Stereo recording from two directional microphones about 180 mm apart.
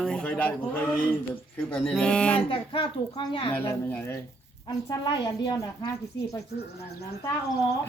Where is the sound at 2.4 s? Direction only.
30° left (ahead or behind).